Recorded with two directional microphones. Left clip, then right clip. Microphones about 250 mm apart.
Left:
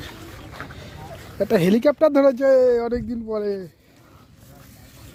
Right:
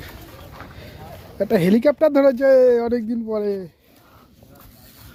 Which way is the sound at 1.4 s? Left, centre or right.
Centre.